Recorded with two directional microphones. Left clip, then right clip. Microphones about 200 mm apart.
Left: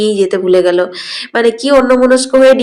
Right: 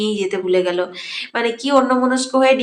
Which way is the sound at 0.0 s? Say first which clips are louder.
Left 9 dB; 25° left (ahead or behind).